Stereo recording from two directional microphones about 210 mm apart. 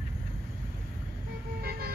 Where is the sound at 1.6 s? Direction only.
50° right (ahead or behind).